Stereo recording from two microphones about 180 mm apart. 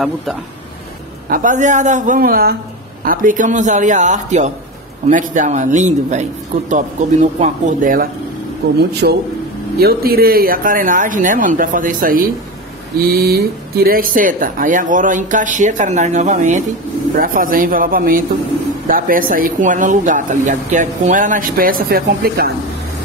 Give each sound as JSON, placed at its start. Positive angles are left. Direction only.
{"t": 1.3, "sound": "speech", "side_deg": -45}